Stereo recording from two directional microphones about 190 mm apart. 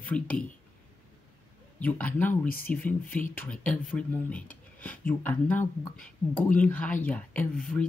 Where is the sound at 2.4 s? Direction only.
50° left (ahead or behind).